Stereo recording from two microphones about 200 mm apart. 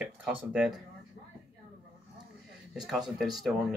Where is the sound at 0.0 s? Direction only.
5° right (ahead or behind).